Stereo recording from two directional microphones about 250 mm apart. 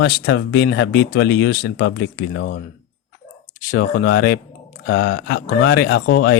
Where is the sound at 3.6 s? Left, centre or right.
Left.